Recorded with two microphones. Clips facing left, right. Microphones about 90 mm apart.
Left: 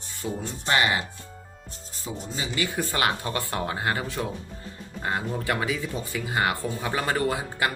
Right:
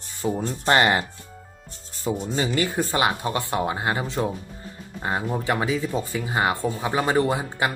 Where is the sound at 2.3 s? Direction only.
50° right (ahead or behind).